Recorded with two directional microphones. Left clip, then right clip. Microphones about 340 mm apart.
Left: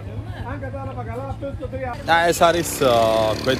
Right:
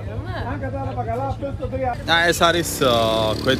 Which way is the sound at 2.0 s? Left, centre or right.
Centre.